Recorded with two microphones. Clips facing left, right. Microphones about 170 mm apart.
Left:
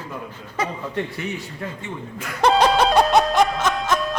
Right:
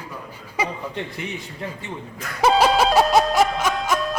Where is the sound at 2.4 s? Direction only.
5° right (ahead or behind).